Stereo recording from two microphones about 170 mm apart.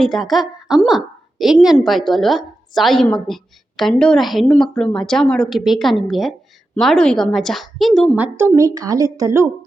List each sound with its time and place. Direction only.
0.0 s a woman's voice: centre (ahead or behind)
8.2 s a woman's voice: 10° right (ahead or behind)